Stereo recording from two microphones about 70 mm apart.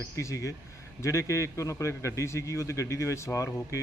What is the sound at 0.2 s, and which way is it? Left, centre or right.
A man's voice, left.